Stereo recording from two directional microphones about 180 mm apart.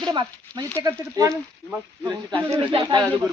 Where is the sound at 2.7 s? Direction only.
25° right (ahead or behind).